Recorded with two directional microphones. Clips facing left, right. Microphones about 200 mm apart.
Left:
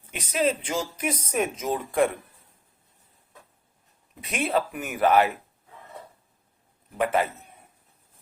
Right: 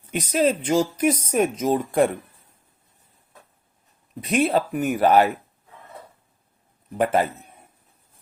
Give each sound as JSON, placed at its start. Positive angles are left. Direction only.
{"t": 0.1, "sound": "speech", "side_deg": -40}
{"t": 4.2, "sound": "speech", "side_deg": -40}
{"t": 6.9, "sound": "speech", "side_deg": -40}